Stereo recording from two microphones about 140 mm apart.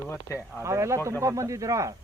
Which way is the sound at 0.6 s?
20° right (ahead or behind).